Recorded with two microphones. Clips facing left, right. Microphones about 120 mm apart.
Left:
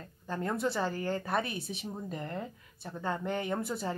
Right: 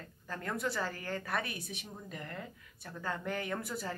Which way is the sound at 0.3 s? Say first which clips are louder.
Left 5 dB; 30° left (ahead or behind).